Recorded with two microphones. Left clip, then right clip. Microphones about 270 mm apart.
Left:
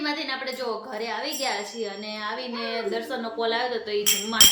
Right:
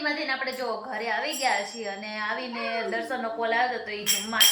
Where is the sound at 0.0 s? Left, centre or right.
Centre.